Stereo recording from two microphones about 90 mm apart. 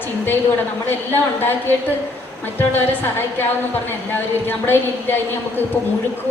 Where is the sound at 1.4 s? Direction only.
25° left (ahead or behind).